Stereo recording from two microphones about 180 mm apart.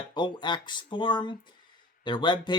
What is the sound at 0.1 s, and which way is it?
Speech, 25° left (ahead or behind).